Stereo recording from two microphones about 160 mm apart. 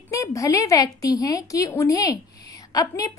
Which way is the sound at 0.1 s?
20° left (ahead or behind).